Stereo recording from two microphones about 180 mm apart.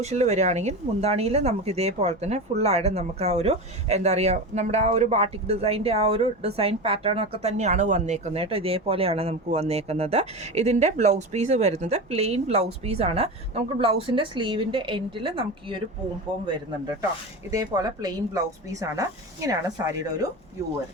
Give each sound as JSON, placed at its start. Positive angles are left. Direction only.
{"t": 0.0, "sound": "speech", "side_deg": -40}
{"t": 17.5, "sound": "speech", "side_deg": -20}